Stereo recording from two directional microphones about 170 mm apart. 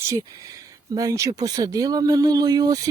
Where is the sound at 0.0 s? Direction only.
20° right (ahead or behind).